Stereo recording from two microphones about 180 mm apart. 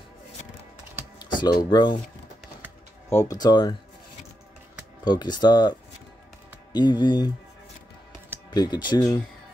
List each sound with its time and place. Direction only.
1.3 s speech: 25° left (ahead or behind)
3.1 s speech: 20° left (ahead or behind)
5.0 s speech: 25° left (ahead or behind)
8.5 s speech: 25° left (ahead or behind)